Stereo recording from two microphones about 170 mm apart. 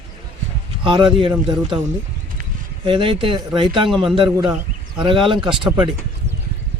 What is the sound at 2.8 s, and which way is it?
A man's voice, 30° right (ahead or behind).